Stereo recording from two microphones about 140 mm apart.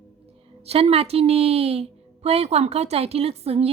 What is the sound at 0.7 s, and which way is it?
A woman's voice, 45° right (ahead or behind).